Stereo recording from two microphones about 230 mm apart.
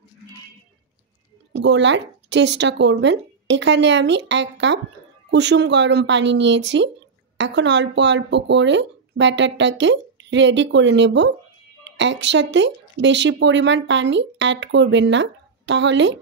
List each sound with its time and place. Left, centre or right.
1.5 s speech: right